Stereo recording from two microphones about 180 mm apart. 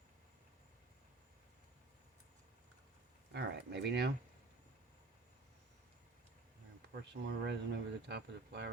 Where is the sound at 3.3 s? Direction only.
70° right (ahead or behind).